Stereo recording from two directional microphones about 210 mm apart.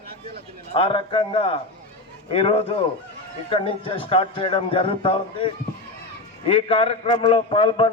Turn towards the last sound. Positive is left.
turn(degrees=25)  # may be behind; listen again after turning